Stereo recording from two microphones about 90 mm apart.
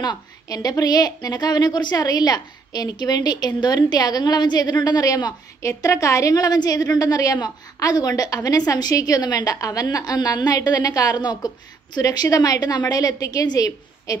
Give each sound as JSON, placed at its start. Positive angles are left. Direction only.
{"t": 0.0, "sound": "a woman's voice", "side_deg": 50}